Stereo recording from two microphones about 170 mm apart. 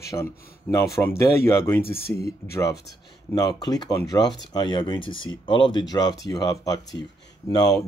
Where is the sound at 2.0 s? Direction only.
65° left (ahead or behind).